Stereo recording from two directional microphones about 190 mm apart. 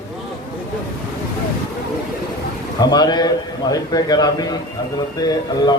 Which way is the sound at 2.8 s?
20° left (ahead or behind).